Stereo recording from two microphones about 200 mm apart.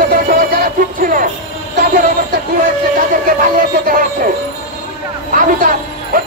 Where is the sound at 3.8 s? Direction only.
45° right (ahead or behind).